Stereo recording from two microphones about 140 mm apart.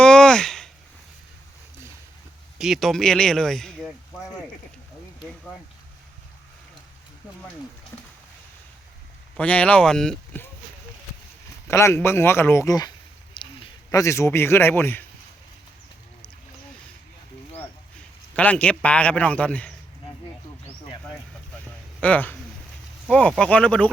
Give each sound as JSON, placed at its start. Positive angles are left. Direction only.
{"t": 0.0, "sound": "a sound", "side_deg": 5}
{"t": 2.6, "sound": "speech", "side_deg": 0}
{"t": 9.4, "sound": "a man's voice", "side_deg": 10}
{"t": 11.7, "sound": "speech", "side_deg": 20}
{"t": 13.3, "sound": "a sound", "side_deg": 35}
{"t": 14.0, "sound": "a man's voice", "side_deg": 20}
{"t": 18.3, "sound": "a man's voice", "side_deg": 10}
{"t": 22.0, "sound": "a man's voice", "side_deg": 10}